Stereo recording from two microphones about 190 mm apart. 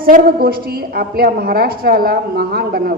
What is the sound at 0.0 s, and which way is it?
A woman's voice, 50° right (ahead or behind).